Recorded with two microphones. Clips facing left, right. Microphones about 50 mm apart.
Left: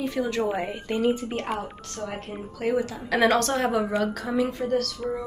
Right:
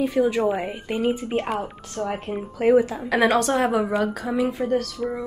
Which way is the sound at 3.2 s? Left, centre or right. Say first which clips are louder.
Right 2 dB; centre.